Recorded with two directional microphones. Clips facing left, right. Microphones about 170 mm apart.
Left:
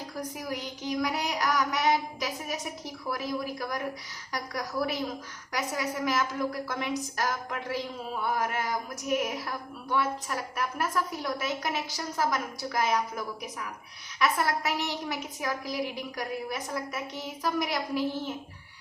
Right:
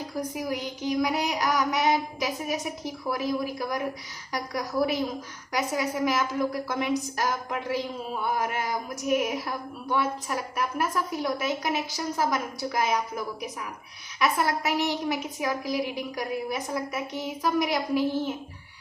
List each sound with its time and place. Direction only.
0.4 s a woman's voice: 15° right (ahead or behind)